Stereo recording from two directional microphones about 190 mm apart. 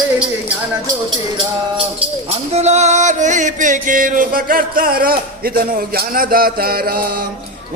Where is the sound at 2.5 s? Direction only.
35° right (ahead or behind); by 7.0 s 50° right (ahead or behind).